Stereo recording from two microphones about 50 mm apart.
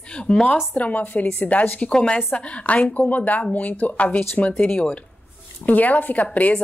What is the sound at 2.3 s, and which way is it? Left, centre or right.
A woman's voice, left.